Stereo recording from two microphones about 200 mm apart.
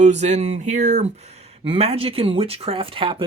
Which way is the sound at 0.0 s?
35° right (ahead or behind).